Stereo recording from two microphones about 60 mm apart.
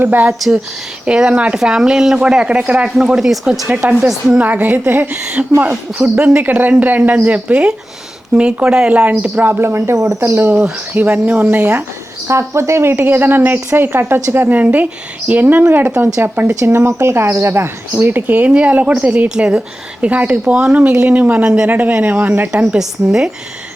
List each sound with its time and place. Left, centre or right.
0.0 s a woman's voice: right
0.3 s speech: centre
1.0 s speech: centre
3.7 s speech: right
4.4 s a woman's voice: right
9.5 s speech: right
10.5 s speech: right
12.3 s a woman's voice: right
16.6 s speech: right
18.0 s speech: right
19.3 s speech: centre; by 22.4 s right
22.5 s speech: centre